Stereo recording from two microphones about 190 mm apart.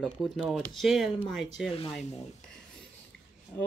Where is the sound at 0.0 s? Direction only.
Centre (ahead or behind).